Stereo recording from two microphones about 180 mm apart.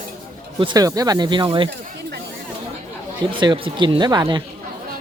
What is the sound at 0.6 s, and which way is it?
Speech, 25° right (ahead or behind).